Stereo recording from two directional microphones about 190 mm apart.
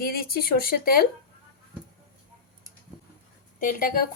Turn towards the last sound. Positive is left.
turn(degrees=45)  # may be behind; listen again after turning